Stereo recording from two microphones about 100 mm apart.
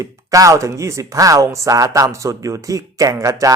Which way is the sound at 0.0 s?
35° right (ahead or behind).